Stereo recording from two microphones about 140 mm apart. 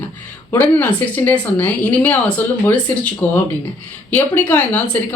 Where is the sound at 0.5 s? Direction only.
15° left (ahead or behind).